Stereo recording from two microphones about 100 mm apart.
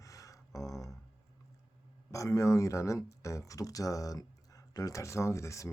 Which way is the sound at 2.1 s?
35° left (ahead or behind).